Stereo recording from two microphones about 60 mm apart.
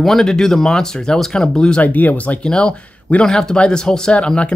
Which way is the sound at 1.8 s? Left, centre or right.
Left.